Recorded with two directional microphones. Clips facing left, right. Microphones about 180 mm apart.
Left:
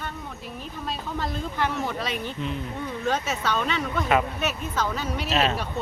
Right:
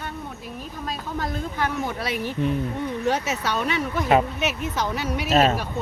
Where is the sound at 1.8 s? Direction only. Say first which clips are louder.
Right 2 dB; 10° right (ahead or behind).